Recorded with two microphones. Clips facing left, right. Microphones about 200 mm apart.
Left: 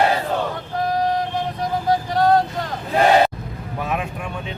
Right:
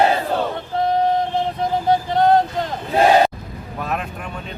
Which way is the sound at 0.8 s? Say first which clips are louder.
Right 3 dB; 25° right (ahead or behind).